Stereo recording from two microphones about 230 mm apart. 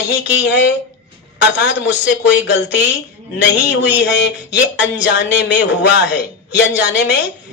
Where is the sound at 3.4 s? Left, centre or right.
Left.